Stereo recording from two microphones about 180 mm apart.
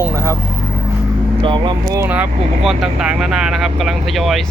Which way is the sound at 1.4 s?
25° right (ahead or behind).